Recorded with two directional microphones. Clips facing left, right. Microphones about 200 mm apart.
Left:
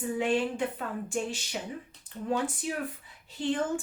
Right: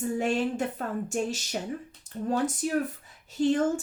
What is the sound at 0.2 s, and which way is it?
Speech, 45° right (ahead or behind).